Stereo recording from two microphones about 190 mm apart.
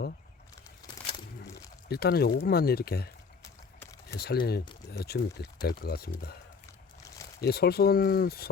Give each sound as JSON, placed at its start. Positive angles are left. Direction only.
{"t": 1.9, "sound": "speech", "side_deg": 55}
{"t": 4.1, "sound": "speech", "side_deg": 55}
{"t": 7.4, "sound": "speech", "side_deg": 55}